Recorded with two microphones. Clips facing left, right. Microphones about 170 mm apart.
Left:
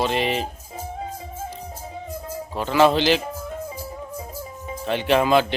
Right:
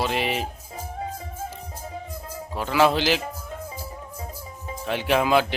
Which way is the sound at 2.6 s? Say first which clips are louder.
Left 3 dB; 5° right (ahead or behind).